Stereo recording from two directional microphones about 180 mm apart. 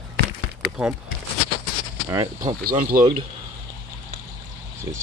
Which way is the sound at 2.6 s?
50° right (ahead or behind).